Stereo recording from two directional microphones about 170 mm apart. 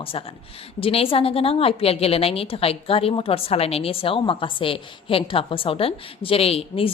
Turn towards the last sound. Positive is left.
turn(degrees=35)  # may be behind; listen again after turning